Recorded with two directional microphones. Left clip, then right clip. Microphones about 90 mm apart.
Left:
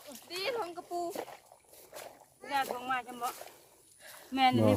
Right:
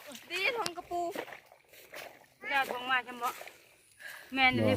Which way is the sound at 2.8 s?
90° left.